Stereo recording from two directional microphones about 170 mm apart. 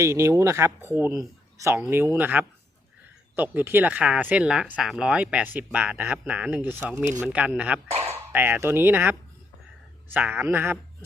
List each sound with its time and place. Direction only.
0.0 s speech: 15° right (ahead or behind)